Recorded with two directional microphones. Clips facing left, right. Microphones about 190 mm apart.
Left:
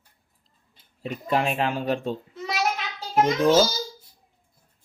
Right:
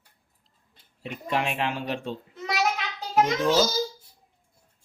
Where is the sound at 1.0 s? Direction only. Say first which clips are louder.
Left 4 dB; 40° left (ahead or behind).